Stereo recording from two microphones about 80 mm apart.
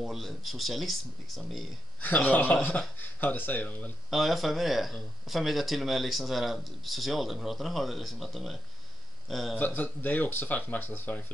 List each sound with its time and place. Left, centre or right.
0.0 s speech: centre
2.2 s speech: left
4.1 s speech: centre
9.6 s speech: left